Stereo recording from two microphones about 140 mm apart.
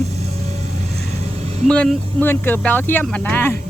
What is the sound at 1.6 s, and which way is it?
Speech, 5° left (ahead or behind).